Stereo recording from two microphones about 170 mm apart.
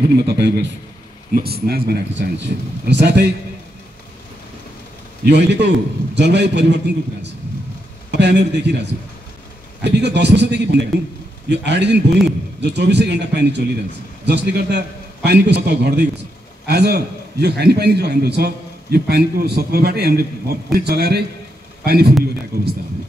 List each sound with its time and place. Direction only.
0.1 s a man's voice: 75° right (ahead or behind)
1.3 s a man's voice: 65° right (ahead or behind); by 3.3 s 90° right
5.2 s a man's voice: 85° right; by 22.7 s 65° right (ahead or behind)